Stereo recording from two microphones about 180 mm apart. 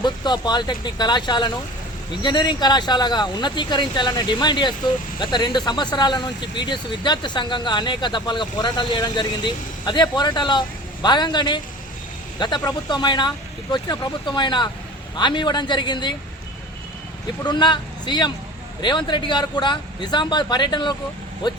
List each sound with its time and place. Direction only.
0.0 s speech: 25° left (ahead or behind)
17.4 s speech: 25° left (ahead or behind)